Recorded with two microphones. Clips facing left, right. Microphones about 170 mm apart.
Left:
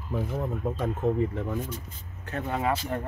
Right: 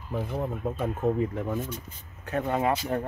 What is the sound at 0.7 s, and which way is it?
Speech, 10° right (ahead or behind).